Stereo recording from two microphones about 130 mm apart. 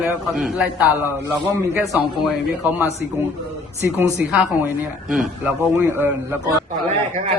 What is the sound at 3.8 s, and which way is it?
Speech, 20° right (ahead or behind).